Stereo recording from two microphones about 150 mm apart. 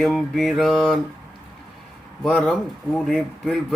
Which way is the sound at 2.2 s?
Centre (ahead or behind).